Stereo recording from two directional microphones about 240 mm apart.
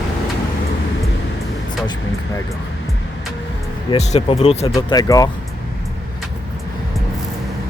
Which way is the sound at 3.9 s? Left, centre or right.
Left.